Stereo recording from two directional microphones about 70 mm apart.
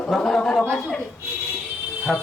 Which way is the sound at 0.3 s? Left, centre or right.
Centre.